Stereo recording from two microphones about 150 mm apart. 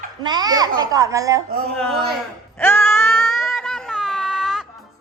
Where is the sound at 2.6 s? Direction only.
15° left (ahead or behind).